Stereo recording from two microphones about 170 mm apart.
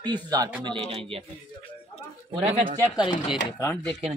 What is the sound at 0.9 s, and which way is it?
Speech, 35° right (ahead or behind).